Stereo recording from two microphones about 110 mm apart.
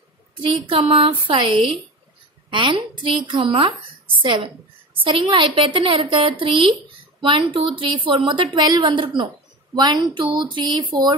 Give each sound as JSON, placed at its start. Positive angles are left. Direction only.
{"t": 0.4, "sound": "a woman's voice", "side_deg": -50}
{"t": 8.5, "sound": "a woman's voice", "side_deg": -35}